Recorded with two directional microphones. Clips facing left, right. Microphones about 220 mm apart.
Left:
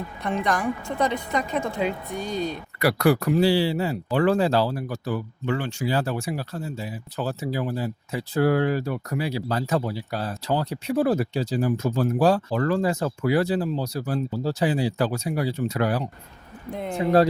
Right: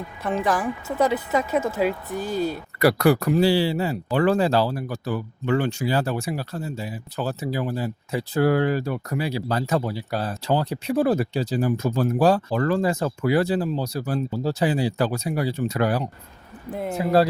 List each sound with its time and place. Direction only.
0.2 s a woman's voice: 5° right (ahead or behind)
2.7 s speech: 40° right (ahead or behind)
16.6 s a woman's voice: 5° right (ahead or behind)